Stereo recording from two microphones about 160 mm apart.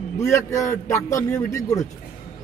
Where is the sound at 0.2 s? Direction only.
20° left (ahead or behind).